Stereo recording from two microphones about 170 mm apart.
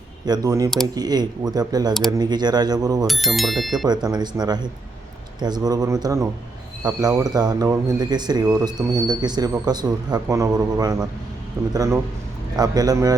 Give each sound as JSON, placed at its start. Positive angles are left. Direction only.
{"t": 0.3, "sound": "speech", "side_deg": -20}
{"t": 3.1, "sound": "speech", "side_deg": 0}
{"t": 4.0, "sound": "speech", "side_deg": -25}